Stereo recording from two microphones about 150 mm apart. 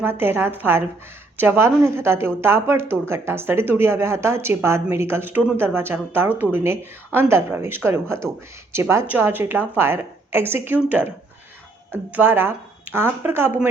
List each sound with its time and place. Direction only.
0.0 s speech: 15° right (ahead or behind)